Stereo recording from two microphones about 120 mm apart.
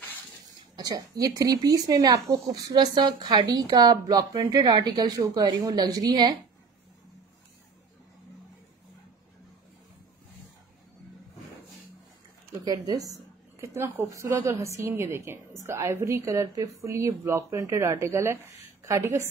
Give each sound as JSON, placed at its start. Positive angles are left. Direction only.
{"t": 0.7, "sound": "speech", "side_deg": -30}
{"t": 12.6, "sound": "a woman's voice", "side_deg": -35}